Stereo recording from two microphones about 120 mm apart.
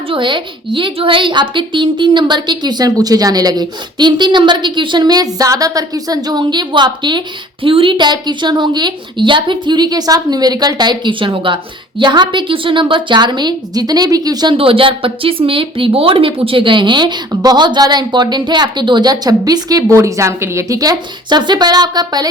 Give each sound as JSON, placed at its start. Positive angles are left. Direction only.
{"t": 0.1, "sound": "speech", "side_deg": -40}
{"t": 14.5, "sound": "speech", "side_deg": -50}